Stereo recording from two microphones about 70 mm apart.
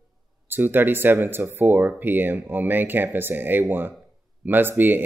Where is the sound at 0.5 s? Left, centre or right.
Right.